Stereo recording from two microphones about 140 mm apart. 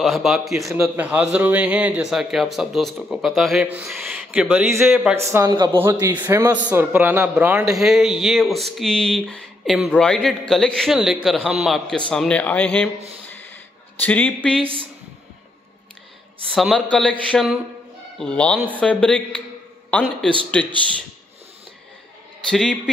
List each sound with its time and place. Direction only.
0.0 s speech: centre (ahead or behind)
4.3 s a man's voice: 10° right (ahead or behind)
7.6 s speech: centre (ahead or behind)
13.9 s speech: 15° left (ahead or behind)
14.6 s a woman's voice: 40° right (ahead or behind)
16.5 s speech: centre (ahead or behind)
22.5 s speech: 5° left (ahead or behind)